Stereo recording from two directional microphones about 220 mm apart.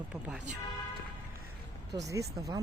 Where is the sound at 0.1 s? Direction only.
5° right (ahead or behind).